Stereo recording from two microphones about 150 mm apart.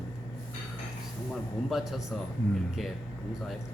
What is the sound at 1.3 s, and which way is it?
Speech, centre (ahead or behind).